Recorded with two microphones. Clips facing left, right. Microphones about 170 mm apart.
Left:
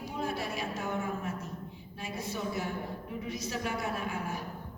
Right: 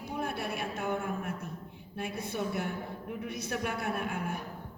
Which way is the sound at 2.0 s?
60° right (ahead or behind).